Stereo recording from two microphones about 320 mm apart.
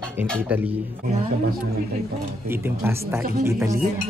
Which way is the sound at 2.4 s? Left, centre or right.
Centre.